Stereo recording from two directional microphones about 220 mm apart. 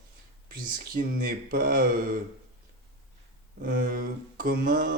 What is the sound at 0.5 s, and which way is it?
Mantra, 40° right (ahead or behind).